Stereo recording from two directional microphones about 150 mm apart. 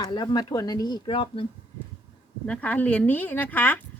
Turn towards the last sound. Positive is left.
turn(degrees=10)  # may be behind; listen again after turning